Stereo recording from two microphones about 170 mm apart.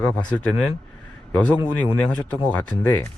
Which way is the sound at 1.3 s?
10° left (ahead or behind).